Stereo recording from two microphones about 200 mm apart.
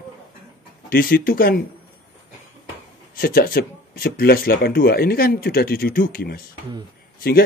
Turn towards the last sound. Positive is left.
turn(degrees=50)  # may be behind; listen again after turning